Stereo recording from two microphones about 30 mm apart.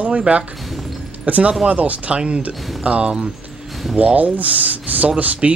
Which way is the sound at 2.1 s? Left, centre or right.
Right.